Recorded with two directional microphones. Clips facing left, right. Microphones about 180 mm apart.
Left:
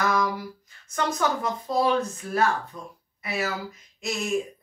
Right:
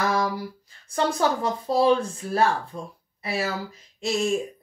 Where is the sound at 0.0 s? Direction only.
30° right (ahead or behind).